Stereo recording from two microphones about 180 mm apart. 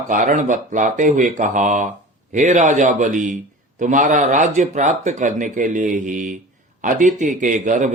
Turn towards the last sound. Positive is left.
turn(degrees=-45)  # may be behind; listen again after turning